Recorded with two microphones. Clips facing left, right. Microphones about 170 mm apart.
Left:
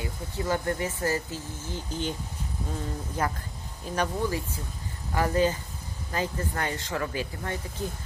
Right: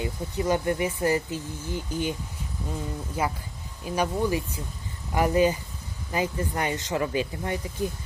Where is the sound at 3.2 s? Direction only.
10° right (ahead or behind).